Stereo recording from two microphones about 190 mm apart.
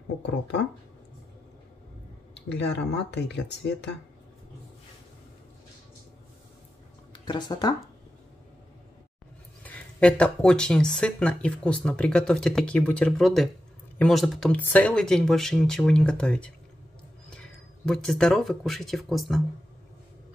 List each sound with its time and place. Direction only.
2.5 s speech: 65° left (ahead or behind)
7.1 s speech: 25° left (ahead or behind)
9.6 s speech: 5° left (ahead or behind)